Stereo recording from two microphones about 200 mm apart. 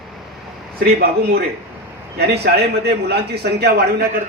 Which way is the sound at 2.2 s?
55° right (ahead or behind).